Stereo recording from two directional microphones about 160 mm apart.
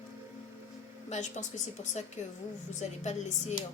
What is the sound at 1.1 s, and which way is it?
Speech, 50° left (ahead or behind).